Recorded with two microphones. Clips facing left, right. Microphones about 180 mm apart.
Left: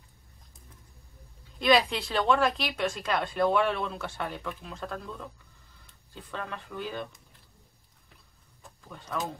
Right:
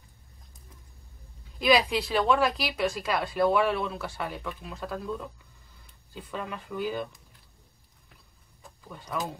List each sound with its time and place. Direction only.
1.6 s speech: 5° right (ahead or behind)
6.3 s speech: 10° right (ahead or behind)
8.8 s speech: 10° right (ahead or behind)